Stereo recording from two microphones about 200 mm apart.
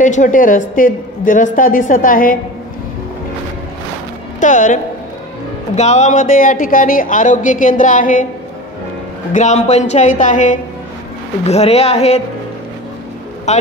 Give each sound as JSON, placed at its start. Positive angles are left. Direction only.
{"t": 0.0, "sound": "speech", "side_deg": 40}
{"t": 4.4, "sound": "speech", "side_deg": 40}
{"t": 5.8, "sound": "speech", "side_deg": 35}
{"t": 9.3, "sound": "speech", "side_deg": 35}
{"t": 13.5, "sound": "speech", "side_deg": 35}